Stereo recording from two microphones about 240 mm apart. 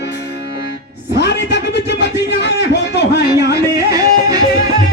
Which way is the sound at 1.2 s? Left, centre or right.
Left.